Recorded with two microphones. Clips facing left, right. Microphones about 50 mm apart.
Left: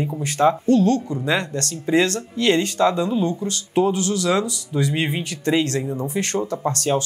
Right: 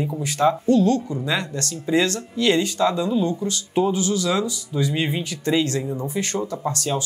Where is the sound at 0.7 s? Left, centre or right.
Left.